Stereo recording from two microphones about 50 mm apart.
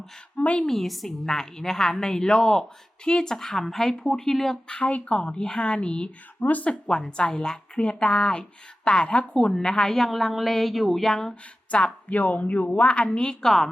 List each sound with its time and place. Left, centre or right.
0.3 s a woman's voice: left
0.6 s a woman's voice: centre
4.7 s a woman's voice: left
6.4 s speech: left
6.7 s a woman's voice: centre
9.5 s a woman's voice: centre
10.1 s a woman's voice: centre
11.7 s a woman's voice: left; by 13.7 s centre